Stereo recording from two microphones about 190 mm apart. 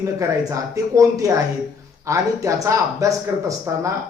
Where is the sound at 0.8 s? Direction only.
20° right (ahead or behind).